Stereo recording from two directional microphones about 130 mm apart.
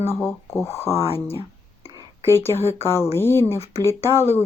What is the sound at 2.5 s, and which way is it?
Speech, 20° left (ahead or behind).